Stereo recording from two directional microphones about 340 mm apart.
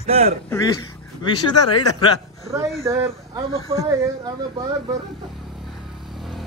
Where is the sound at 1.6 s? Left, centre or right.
Left.